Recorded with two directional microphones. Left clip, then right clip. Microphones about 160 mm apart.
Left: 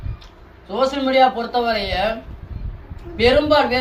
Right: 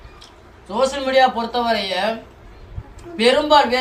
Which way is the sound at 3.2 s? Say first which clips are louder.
Right 1 dB; 20° left (ahead or behind).